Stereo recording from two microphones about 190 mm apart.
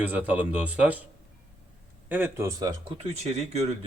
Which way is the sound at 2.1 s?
10° right (ahead or behind).